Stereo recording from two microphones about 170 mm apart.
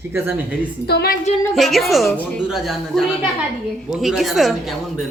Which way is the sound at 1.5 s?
Centre (ahead or behind).